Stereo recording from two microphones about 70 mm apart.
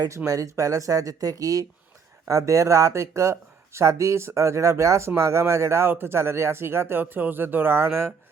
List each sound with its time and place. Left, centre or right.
0.3 s speech: right
2.2 s speech: right